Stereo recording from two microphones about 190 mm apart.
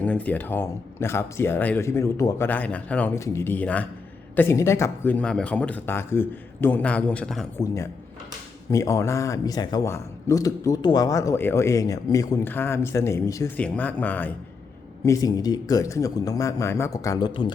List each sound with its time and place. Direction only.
0.0 s a man's voice: 5° left (ahead or behind)
7.6 s a man's voice: 15° left (ahead or behind)